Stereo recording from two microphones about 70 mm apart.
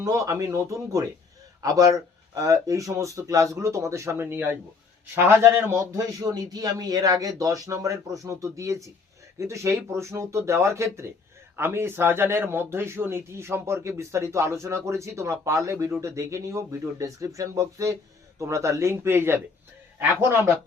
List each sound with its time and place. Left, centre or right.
0.0 s a man's voice: right
6.2 s a man's voice: right